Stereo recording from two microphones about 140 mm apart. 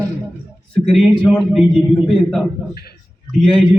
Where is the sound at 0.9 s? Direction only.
Centre (ahead or behind).